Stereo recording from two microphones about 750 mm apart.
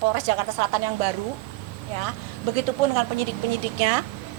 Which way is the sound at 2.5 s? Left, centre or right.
Right.